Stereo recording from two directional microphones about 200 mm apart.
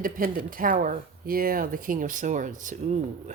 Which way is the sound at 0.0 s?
45° right (ahead or behind).